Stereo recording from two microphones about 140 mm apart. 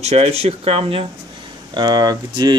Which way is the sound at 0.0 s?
50° right (ahead or behind).